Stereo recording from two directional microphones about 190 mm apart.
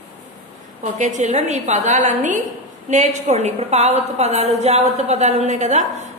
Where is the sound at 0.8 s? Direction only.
40° right (ahead or behind).